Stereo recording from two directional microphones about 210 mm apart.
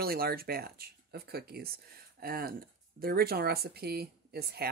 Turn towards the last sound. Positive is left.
turn(degrees=-50)  # may be behind; listen again after turning